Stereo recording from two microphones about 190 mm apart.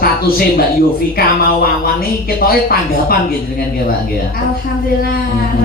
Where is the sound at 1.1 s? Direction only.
50° left (ahead or behind).